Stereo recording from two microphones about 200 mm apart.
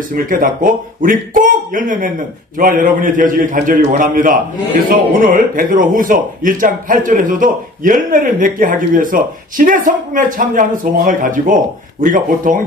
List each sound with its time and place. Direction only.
0.1 s a man's voice: 45° right (ahead or behind)